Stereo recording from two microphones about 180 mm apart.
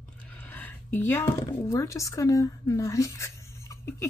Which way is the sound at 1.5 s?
20° left (ahead or behind).